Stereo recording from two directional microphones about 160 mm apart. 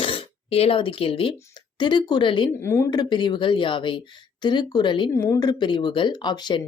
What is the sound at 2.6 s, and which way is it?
Speech, 15° left (ahead or behind).